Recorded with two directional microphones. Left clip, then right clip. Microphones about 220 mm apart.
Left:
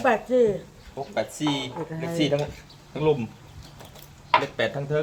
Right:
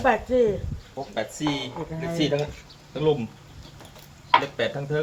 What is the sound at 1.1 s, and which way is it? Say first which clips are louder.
Speech: left 1 dB; 25° left (ahead or behind).